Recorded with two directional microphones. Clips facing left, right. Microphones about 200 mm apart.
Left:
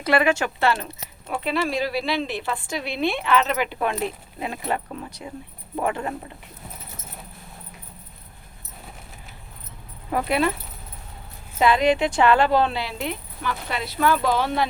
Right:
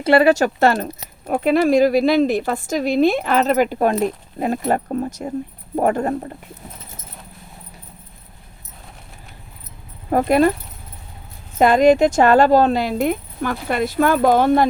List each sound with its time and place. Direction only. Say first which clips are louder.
0.0 s speech: right 7 dB; 30° right (ahead or behind)
10.1 s speech: right 7 dB; 45° right (ahead or behind)
11.6 s speech: right 7 dB; 45° right (ahead or behind)